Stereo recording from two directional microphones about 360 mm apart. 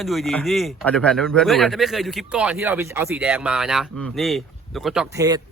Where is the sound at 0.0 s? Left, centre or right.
Centre.